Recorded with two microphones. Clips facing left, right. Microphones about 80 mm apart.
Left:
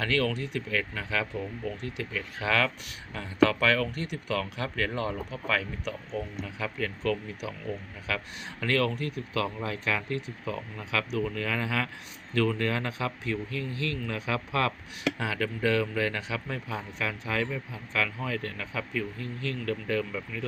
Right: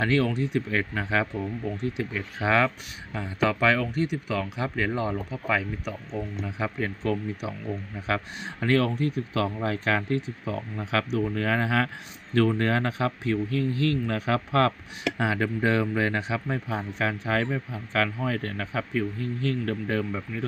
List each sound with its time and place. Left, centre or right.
0.0 s a man's voice: right
9.6 s a man's voice: right
15.2 s a man's voice: right